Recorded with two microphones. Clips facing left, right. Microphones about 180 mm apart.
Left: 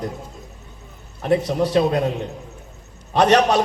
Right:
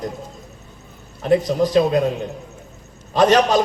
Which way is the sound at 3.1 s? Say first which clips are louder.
Right 1 dB; 65° left (ahead or behind).